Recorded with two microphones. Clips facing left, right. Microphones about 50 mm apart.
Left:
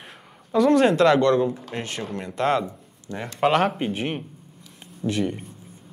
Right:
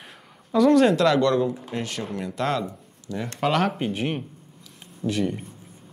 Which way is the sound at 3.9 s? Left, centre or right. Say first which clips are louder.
Even; centre.